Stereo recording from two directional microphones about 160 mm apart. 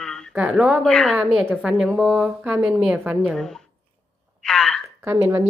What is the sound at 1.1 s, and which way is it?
A woman's voice, 10° right (ahead or behind).